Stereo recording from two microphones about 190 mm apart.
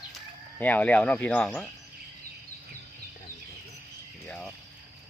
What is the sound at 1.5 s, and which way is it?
Cutlery, centre (ahead or behind).